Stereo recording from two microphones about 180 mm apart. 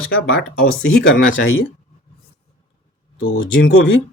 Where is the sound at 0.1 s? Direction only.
60° left (ahead or behind).